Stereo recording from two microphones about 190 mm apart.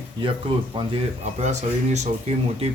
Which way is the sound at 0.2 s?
25° right (ahead or behind).